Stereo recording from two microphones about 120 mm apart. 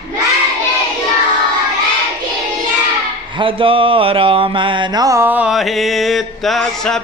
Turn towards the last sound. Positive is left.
turn(degrees=5)  # may be behind; listen again after turning